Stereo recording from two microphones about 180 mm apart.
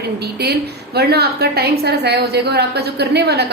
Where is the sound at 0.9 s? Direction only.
65° right (ahead or behind).